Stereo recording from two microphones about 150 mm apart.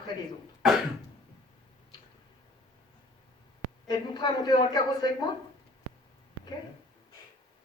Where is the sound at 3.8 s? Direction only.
30° left (ahead or behind).